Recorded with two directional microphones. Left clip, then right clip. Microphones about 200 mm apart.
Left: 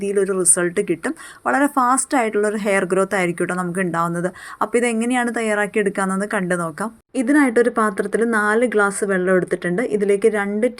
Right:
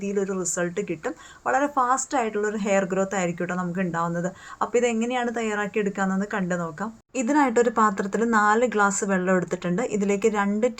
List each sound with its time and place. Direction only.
0.0 s speech: 20° left (ahead or behind)